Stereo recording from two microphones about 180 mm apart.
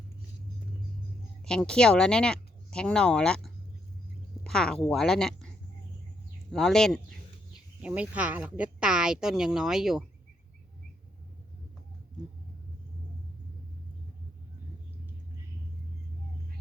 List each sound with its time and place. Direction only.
1.5 s a woman's voice: 5° left (ahead or behind)
6.5 s a woman's voice: 5° left (ahead or behind)
7.8 s a woman's voice: 10° right (ahead or behind)